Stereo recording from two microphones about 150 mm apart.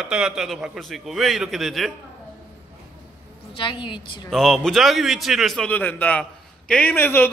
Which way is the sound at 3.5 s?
35° left (ahead or behind).